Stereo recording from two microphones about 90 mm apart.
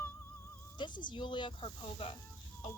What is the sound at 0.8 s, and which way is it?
Speech, 60° left (ahead or behind).